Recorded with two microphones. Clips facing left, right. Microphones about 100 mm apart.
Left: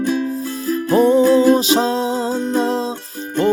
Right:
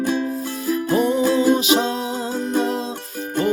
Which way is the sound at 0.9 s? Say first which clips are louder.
Left 7 dB; 35° left (ahead or behind).